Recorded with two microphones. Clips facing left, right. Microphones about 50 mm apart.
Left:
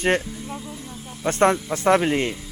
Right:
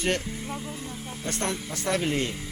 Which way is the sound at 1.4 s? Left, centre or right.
Left.